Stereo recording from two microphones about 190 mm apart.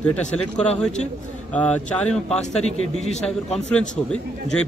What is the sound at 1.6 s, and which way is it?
Speech, 5° left (ahead or behind).